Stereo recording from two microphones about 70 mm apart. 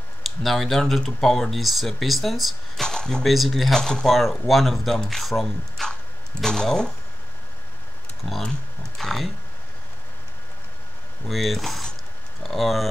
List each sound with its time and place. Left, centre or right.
0.2 s speech: centre
8.2 s speech: left
8.9 s speech: centre
11.2 s speech: centre